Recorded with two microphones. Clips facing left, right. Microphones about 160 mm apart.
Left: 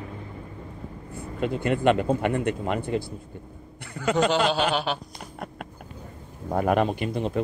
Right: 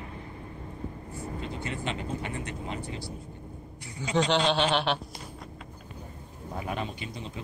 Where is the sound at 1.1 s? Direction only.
60° left (ahead or behind).